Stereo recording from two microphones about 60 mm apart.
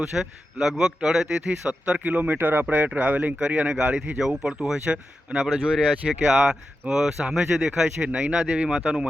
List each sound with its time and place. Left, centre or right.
0.0 s a man's voice: centre
8.0 s speech: centre